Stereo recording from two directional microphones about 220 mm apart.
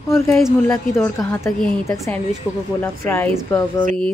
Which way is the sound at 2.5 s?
5° right (ahead or behind).